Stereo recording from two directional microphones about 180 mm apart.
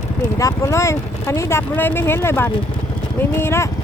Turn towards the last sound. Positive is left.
turn(degrees=15)  # may be behind; listen again after turning